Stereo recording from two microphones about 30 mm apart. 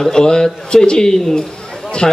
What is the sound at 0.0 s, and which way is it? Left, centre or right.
A man's voice, left.